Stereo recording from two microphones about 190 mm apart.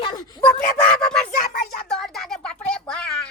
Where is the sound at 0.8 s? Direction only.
5° left (ahead or behind).